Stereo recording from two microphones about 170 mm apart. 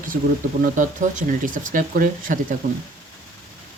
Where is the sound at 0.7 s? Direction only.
50° right (ahead or behind).